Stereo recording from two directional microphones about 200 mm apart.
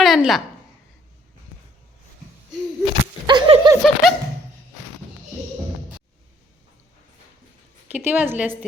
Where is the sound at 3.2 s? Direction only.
25° right (ahead or behind).